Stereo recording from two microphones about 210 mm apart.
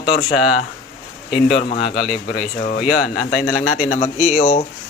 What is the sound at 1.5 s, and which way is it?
Mantra, 25° left (ahead or behind).